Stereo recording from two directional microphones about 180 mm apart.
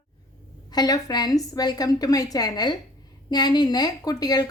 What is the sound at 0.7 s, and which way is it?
A woman's voice, 20° left (ahead or behind).